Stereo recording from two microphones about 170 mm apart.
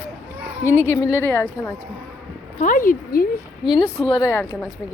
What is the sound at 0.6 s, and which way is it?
Speech, 15° left (ahead or behind).